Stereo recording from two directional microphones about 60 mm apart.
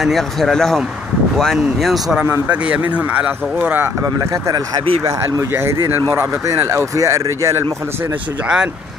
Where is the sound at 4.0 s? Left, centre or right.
Right.